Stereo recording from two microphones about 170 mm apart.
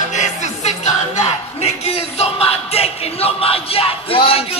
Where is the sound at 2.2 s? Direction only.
35° left (ahead or behind).